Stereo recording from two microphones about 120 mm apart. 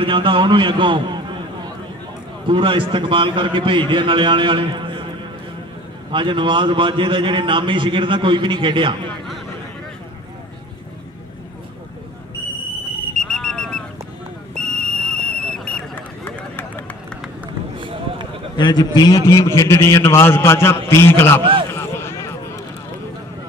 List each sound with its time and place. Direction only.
0.0 s a man's voice: 45° right (ahead or behind)
2.4 s a man's voice: 45° right (ahead or behind)
6.1 s a man's voice: 45° right (ahead or behind)
13.2 s a sound: 5° left (ahead or behind)
18.6 s a man's voice: 35° left (ahead or behind); by 21.4 s 20° left (ahead or behind)
21.4 s a man's voice: 45° right (ahead or behind)
21.6 s a sound: 20° left (ahead or behind)